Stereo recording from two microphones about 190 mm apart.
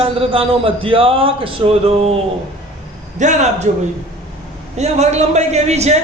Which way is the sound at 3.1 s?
40° right (ahead or behind).